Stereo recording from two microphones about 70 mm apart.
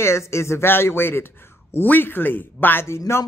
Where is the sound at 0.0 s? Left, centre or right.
Left.